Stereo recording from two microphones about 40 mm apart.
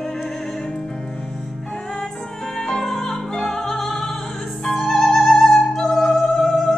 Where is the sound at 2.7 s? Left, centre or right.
Centre.